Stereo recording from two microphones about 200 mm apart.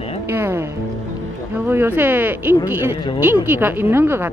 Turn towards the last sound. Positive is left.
turn(degrees=-10)  # may be behind; listen again after turning